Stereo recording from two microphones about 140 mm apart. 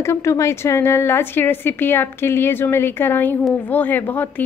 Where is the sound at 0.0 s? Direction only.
20° left (ahead or behind).